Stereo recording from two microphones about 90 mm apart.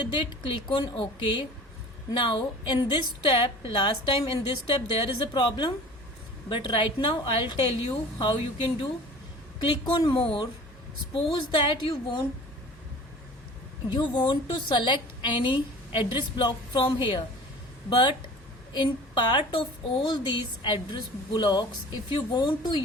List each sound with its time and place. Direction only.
0.1 s a woman's voice: 65° left (ahead or behind)
9.6 s a woman's voice: 70° left (ahead or behind)
14.2 s a woman's voice: 60° left (ahead or behind)